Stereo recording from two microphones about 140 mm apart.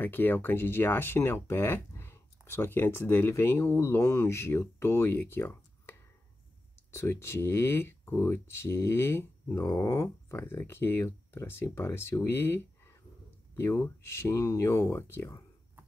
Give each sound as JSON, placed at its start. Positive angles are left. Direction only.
{"t": 0.0, "sound": "speech", "side_deg": 15}